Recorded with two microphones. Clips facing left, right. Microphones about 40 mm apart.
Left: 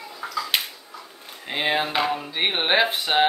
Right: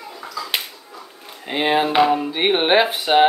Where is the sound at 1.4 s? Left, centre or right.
Centre.